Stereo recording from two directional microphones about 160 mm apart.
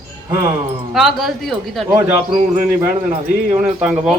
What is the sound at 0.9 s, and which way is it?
Speech, centre (ahead or behind).